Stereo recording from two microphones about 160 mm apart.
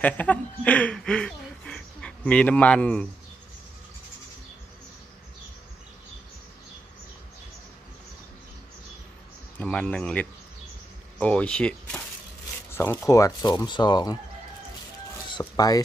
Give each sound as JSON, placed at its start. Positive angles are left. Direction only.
{"t": 0.0, "sound": "speech", "side_deg": 10}
{"t": 9.6, "sound": "speech", "side_deg": 5}
{"t": 15.2, "sound": "speech", "side_deg": 25}